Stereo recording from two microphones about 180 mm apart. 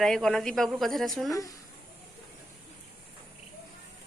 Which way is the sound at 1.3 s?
20° left (ahead or behind).